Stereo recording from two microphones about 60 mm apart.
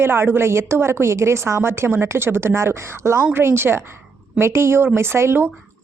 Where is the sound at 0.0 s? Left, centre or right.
Right.